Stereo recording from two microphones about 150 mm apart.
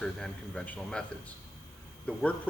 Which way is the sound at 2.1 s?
10° left (ahead or behind).